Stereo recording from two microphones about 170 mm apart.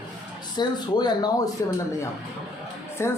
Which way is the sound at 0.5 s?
25° left (ahead or behind).